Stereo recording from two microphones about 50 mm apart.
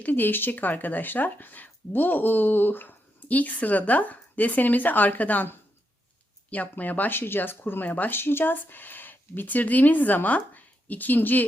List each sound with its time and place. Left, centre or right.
0.0 s speech: left
6.5 s speech: left
7.2 s speech: left
8.1 s speech: left